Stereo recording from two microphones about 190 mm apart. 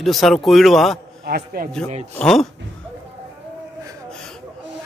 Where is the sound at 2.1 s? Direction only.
5° left (ahead or behind).